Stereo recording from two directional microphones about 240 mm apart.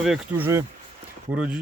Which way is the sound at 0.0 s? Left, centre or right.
Centre.